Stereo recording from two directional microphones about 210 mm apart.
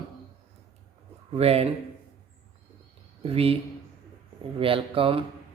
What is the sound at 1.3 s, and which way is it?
Speech, 30° right (ahead or behind).